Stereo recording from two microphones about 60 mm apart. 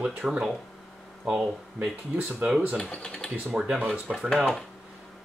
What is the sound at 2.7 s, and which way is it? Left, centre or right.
Speech, centre.